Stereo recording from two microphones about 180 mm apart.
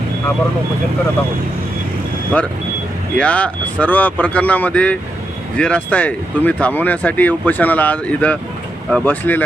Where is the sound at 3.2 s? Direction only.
5° left (ahead or behind).